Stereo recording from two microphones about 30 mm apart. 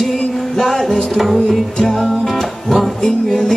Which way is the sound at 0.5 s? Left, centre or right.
Centre.